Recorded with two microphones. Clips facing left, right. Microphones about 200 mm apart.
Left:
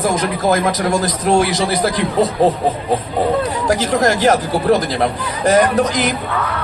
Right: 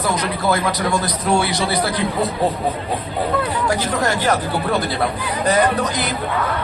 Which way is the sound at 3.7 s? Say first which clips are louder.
Left 8 dB; 40° left (ahead or behind).